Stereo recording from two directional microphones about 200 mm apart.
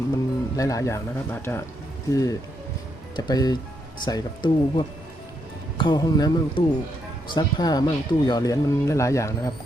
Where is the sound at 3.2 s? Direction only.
20° left (ahead or behind).